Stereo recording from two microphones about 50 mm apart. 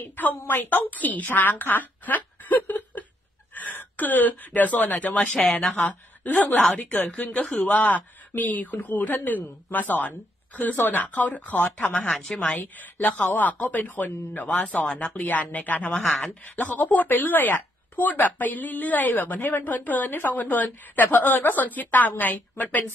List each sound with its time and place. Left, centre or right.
0.0 s speech: left
5.3 s speech: centre
5.8 s a woman's voice: left
6.5 s speech: centre
6.9 s speech: left
14.9 s speech: centre
15.1 s speech: left